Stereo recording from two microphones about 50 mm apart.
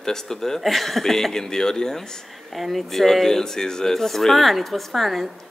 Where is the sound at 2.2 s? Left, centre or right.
Centre.